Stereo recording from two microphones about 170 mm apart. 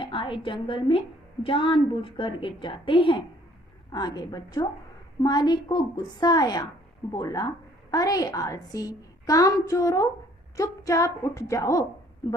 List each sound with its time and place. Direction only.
0.0 s a woman's voice: 30° left (ahead or behind)